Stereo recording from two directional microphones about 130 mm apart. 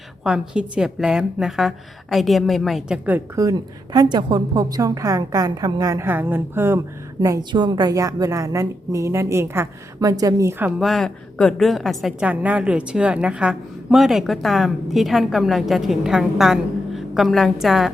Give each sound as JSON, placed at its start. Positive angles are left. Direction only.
{"t": 0.3, "sound": "a woman's voice", "side_deg": -5}
{"t": 3.4, "sound": "a woman's voice", "side_deg": -20}
{"t": 7.2, "sound": "a woman's voice", "side_deg": -30}
{"t": 10.8, "sound": "a woman's voice", "side_deg": 0}
{"t": 12.3, "sound": "a woman's voice", "side_deg": -10}